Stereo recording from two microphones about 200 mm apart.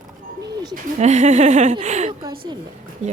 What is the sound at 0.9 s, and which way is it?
Speech, 35° right (ahead or behind).